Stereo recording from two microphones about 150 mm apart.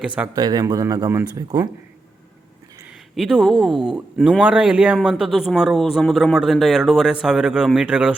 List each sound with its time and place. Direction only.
0.3 s speech: 25° right (ahead or behind)
3.2 s speech: centre (ahead or behind)